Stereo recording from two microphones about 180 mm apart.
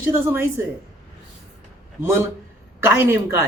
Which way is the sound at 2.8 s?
15° right (ahead or behind).